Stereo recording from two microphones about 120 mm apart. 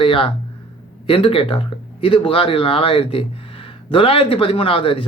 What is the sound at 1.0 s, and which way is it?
A man's voice, 50° left (ahead or behind).